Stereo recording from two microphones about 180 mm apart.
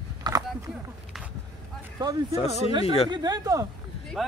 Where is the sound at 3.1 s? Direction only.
20° right (ahead or behind).